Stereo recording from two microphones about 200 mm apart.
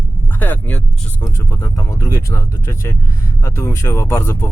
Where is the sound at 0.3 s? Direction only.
10° left (ahead or behind).